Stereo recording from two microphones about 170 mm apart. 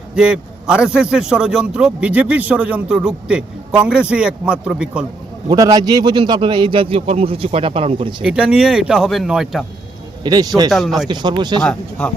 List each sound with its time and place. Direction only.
0.2 s a man's voice: 5° right (ahead or behind)
5.5 s a man's voice: 20° right (ahead or behind)
8.2 s a man's voice: 5° right (ahead or behind)
10.2 s a man's voice: 25° right (ahead or behind)
10.7 s a man's voice: centre (ahead or behind)
11.1 s a man's voice: 25° right (ahead or behind)
11.6 s speech: 5° left (ahead or behind)